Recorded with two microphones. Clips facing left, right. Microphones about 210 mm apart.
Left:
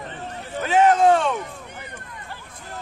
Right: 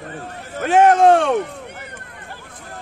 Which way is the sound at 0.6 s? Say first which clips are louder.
Right 4 dB; 55° right (ahead or behind).